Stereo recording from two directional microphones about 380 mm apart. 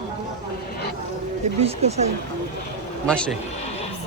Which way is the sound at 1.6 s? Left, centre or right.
Centre.